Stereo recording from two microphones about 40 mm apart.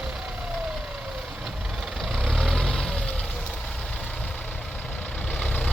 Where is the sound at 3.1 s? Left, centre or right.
Left.